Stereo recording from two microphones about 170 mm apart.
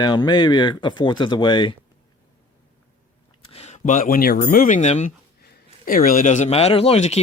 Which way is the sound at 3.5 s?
40° left (ahead or behind).